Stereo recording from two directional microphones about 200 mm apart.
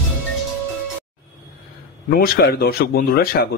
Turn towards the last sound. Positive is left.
turn(degrees=50)  # may be behind; listen again after turning